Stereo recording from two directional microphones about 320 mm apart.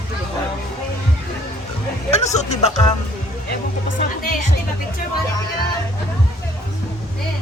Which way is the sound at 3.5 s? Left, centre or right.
Left.